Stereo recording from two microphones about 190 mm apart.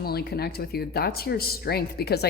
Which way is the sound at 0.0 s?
55° left (ahead or behind).